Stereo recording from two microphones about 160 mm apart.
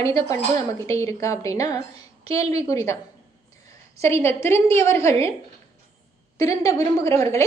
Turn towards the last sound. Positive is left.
turn(degrees=20)  # may be behind; listen again after turning